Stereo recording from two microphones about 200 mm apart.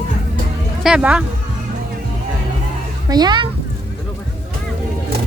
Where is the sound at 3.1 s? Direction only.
20° right (ahead or behind).